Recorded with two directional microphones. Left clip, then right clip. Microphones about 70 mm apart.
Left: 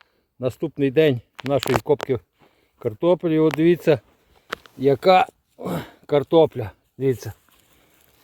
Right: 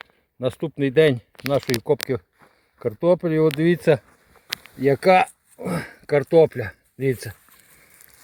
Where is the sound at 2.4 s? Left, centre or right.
Centre.